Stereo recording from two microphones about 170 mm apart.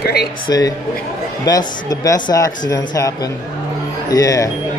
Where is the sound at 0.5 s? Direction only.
20° left (ahead or behind).